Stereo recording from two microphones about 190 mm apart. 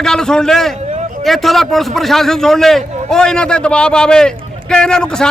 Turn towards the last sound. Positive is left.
turn(degrees=5)  # may be behind; listen again after turning